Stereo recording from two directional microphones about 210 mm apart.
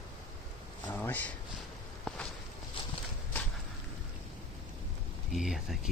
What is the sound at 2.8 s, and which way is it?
Walk, 25° left (ahead or behind).